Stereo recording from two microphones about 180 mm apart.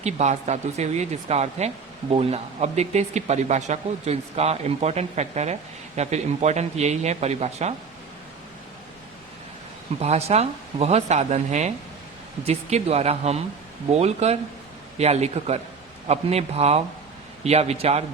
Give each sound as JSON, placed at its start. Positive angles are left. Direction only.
{"t": 0.0, "sound": "speech", "side_deg": -40}
{"t": 10.0, "sound": "speech", "side_deg": -35}